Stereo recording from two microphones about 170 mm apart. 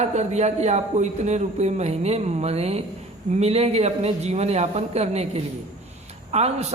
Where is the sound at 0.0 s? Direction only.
40° right (ahead or behind).